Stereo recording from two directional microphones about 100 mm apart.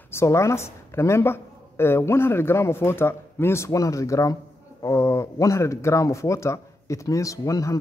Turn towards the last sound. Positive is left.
turn(degrees=35)  # may be behind; listen again after turning